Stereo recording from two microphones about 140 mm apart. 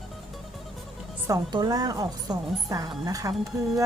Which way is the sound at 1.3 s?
25° right (ahead or behind).